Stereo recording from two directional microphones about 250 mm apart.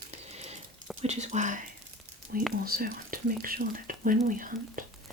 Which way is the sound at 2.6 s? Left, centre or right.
Right.